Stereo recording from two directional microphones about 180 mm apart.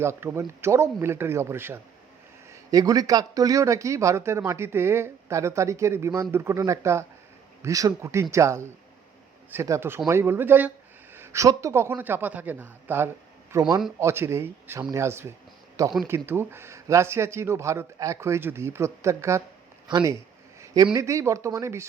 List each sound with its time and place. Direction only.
0.0 s a man's voice: 15° right (ahead or behind)